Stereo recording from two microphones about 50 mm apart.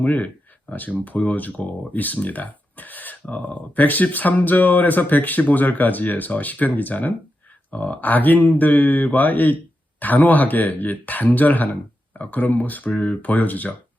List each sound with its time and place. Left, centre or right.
0.0 s speech: left